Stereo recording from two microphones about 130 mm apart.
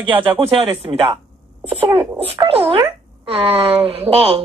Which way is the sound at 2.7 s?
40° right (ahead or behind).